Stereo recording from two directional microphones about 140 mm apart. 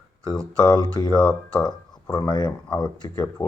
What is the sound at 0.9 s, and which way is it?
Speech, 30° left (ahead or behind).